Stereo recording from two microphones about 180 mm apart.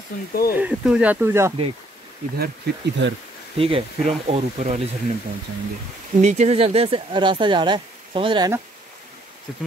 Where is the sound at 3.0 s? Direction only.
90° right.